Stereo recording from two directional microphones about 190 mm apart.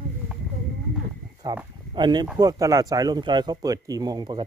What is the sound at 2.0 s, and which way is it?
Speech, 25° right (ahead or behind).